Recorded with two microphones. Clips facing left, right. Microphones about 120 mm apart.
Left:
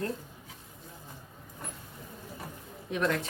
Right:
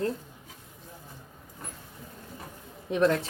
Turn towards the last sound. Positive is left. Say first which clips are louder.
# right 6 dB
turn(degrees=-35)  # may be behind; listen again after turning